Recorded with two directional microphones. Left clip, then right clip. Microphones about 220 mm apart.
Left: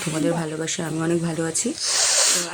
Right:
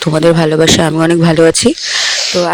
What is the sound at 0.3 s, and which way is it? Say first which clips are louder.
Speech: right 18 dB; 40° right (ahead or behind).